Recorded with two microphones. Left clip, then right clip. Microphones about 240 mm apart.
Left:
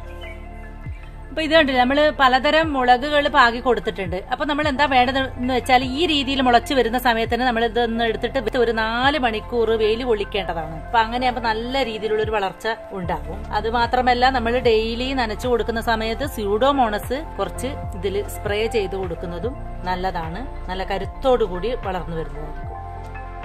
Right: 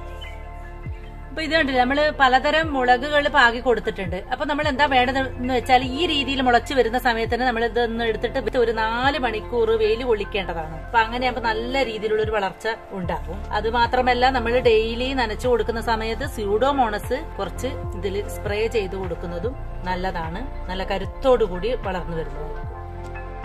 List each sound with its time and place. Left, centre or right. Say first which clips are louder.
1.3 s a woman's voice: left 4 dB; left